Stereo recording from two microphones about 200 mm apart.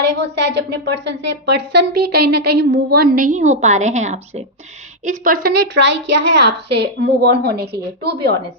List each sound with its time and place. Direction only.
0.0 s a woman's voice: 55° right (ahead or behind)
3.3 s a woman's voice: 35° right (ahead or behind)
5.7 s a woman's voice: 60° right (ahead or behind)